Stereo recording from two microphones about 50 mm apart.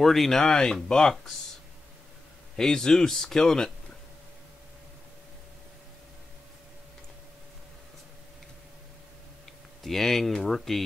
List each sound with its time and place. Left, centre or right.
0.0 s speech: centre
2.5 s speech: centre
9.8 s speech: centre